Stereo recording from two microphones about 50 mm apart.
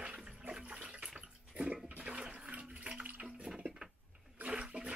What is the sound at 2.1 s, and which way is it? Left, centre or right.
Water, centre.